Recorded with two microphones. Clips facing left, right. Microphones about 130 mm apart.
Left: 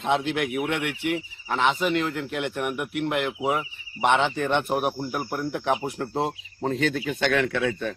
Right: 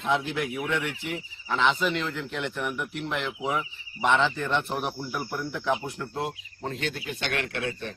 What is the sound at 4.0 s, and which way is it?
Speech, 35° left (ahead or behind).